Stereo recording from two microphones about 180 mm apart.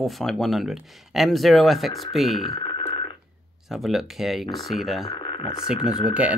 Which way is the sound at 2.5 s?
25° left (ahead or behind).